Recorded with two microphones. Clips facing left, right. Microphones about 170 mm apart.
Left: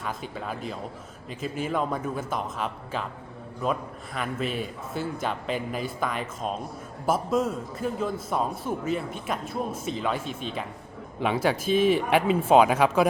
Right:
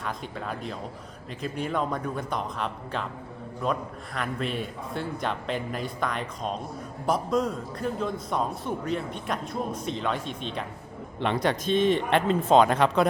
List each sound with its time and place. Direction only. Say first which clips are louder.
0.0 s speech: even; 5° left (ahead or behind)